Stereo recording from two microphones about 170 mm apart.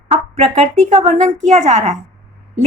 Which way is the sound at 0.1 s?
35° right (ahead or behind).